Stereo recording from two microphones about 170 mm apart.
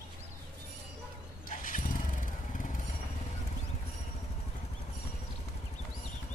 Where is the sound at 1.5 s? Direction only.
50° left (ahead or behind).